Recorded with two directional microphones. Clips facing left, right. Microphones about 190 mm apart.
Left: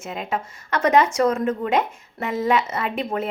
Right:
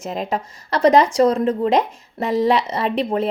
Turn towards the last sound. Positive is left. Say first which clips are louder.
# right 5 dB
turn(degrees=-30)  # may be behind; listen again after turning